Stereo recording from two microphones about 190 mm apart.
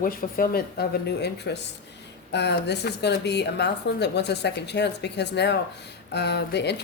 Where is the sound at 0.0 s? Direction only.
50° left (ahead or behind).